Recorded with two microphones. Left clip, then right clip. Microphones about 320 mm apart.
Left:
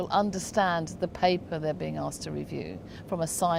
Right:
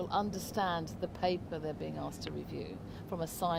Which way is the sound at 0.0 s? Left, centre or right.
Left.